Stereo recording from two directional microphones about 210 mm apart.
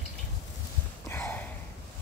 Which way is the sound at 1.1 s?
10° left (ahead or behind).